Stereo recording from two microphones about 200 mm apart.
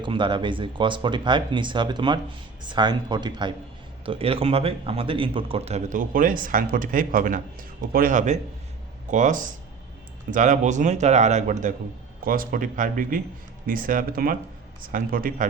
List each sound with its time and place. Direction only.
0.0 s a man's voice: 25° right (ahead or behind); by 15.4 s 45° right (ahead or behind)